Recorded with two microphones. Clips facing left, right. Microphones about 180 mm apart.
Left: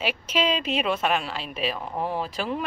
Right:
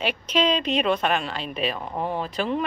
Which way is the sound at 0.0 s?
5° left (ahead or behind).